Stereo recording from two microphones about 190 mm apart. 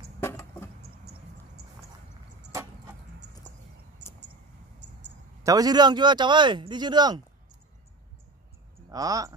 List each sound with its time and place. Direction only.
0.2 s a sound: 15° left (ahead or behind)
5.4 s speech: 20° right (ahead or behind)
8.9 s speech: 20° right (ahead or behind)